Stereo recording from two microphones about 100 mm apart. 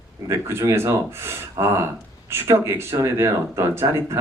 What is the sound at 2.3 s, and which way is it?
Speech, 25° right (ahead or behind).